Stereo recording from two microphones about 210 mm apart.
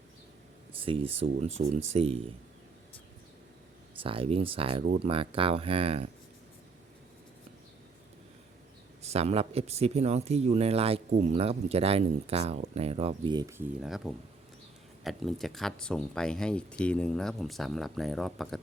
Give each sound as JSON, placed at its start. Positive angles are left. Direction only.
{"t": 0.7, "sound": "a sound", "side_deg": -25}
{"t": 1.1, "sound": "speech", "side_deg": -30}
{"t": 4.0, "sound": "speech", "side_deg": -25}
{"t": 9.0, "sound": "speech", "side_deg": -30}
{"t": 13.8, "sound": "speech", "side_deg": 0}